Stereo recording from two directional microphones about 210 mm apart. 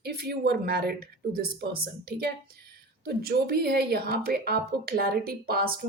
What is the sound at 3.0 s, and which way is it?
A woman's voice, 45° right (ahead or behind).